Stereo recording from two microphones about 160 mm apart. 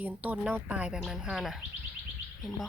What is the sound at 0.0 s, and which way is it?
Speech, 10° right (ahead or behind).